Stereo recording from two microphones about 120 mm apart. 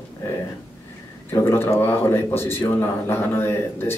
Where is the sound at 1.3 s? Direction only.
20° left (ahead or behind).